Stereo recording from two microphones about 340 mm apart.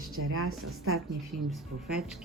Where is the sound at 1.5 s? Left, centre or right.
Centre.